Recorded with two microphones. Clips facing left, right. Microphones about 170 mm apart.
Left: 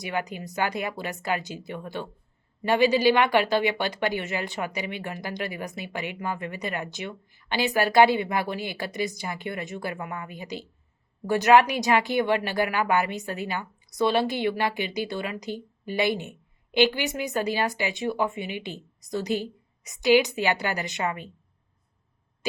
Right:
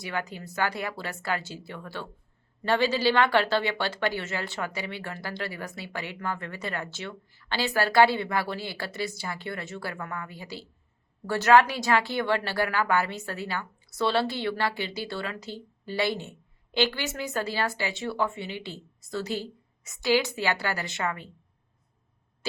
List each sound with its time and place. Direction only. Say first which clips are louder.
0.0 s a woman's voice: left 3 dB; 15° left (ahead or behind)